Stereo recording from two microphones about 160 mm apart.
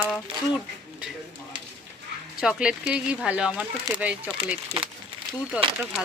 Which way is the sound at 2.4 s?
5° right (ahead or behind).